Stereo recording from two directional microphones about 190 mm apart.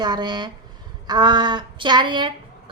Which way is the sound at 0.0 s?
20° right (ahead or behind).